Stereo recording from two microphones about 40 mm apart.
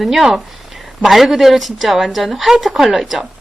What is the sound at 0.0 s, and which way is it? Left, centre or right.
A woman's voice, centre.